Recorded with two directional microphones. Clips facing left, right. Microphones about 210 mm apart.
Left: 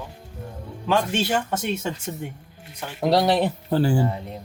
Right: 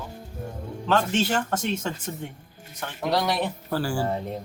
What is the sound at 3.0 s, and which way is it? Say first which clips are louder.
Speech: left 6 dB; 35° left (ahead or behind).